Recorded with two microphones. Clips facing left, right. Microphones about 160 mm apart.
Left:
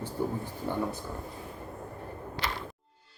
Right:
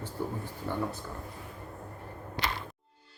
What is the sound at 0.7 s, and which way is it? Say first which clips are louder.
Speech: left 2 dB; 15° left (ahead or behind).